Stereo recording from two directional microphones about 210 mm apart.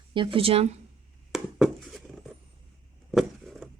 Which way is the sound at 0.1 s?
25° right (ahead or behind).